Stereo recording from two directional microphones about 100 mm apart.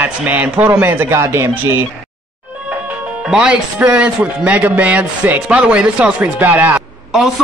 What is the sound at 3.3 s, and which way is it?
Speech, 10° right (ahead or behind).